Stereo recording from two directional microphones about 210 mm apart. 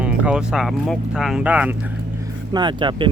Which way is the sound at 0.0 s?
5° right (ahead or behind).